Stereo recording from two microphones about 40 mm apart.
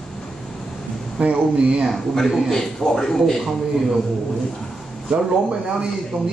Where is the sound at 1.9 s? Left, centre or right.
Centre.